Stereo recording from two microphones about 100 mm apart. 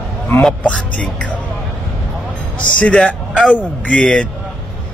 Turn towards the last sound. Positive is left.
turn(degrees=10)  # may be behind; listen again after turning